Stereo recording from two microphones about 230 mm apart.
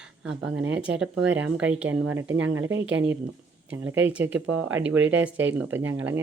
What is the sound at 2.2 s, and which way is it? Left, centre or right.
Speech, right.